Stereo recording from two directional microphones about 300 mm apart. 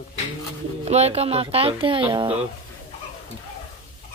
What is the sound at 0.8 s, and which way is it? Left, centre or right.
Speech, right.